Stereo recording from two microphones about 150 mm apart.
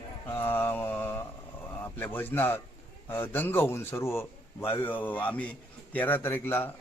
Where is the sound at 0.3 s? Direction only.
15° left (ahead or behind).